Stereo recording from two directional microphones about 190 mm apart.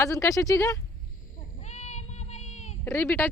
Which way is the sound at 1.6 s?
35° left (ahead or behind).